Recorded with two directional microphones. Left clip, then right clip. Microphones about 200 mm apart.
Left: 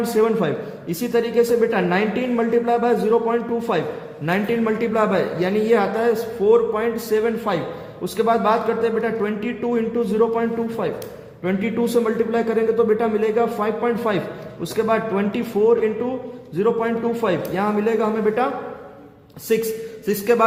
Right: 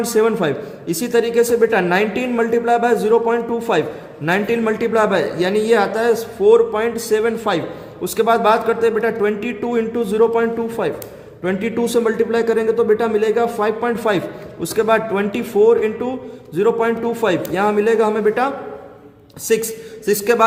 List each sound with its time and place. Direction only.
0.2 s speech: 30° right (ahead or behind)